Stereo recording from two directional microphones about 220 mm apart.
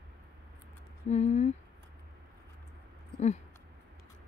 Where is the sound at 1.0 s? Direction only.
30° left (ahead or behind).